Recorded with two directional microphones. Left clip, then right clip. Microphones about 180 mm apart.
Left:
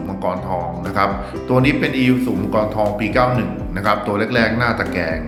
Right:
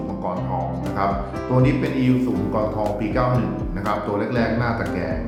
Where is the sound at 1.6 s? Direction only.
10° left (ahead or behind).